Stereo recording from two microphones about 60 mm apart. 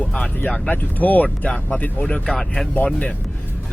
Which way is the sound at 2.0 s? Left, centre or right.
Centre.